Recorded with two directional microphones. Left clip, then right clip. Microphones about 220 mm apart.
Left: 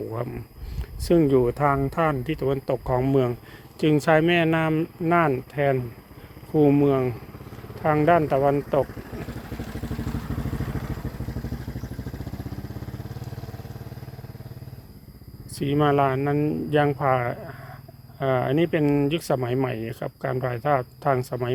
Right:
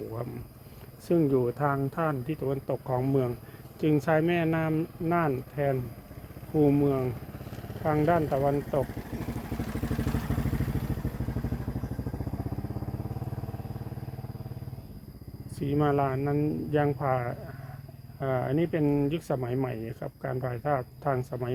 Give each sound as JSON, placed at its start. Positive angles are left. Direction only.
{"t": 1.0, "sound": "speech", "side_deg": 40}
{"t": 9.6, "sound": "vehicle", "side_deg": -15}
{"t": 10.0, "sound": "vehicle", "side_deg": -5}
{"t": 15.5, "sound": "speech", "side_deg": 40}